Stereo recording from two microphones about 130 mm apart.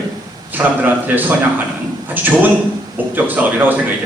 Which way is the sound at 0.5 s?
15° right (ahead or behind).